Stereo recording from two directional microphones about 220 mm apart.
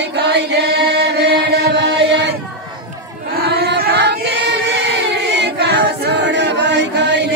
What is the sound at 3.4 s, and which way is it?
Choir, 50° right (ahead or behind).